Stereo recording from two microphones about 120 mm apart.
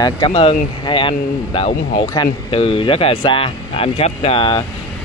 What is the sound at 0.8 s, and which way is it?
Speech, 45° left (ahead or behind).